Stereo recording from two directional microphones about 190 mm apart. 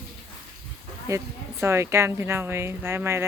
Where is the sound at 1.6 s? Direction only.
15° right (ahead or behind).